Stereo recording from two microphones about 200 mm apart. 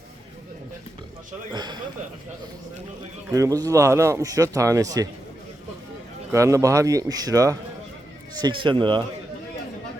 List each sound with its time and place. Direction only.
1.5 s speech: 20° right (ahead or behind)
3.2 s speech: 15° right (ahead or behind)
6.3 s speech: 15° right (ahead or behind)